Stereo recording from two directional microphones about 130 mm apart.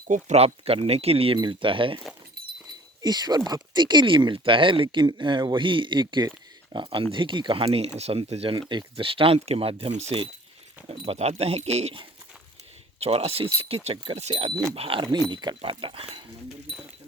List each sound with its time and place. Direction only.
0.3 s speech: 50° right (ahead or behind)
3.0 s speech: 30° right (ahead or behind)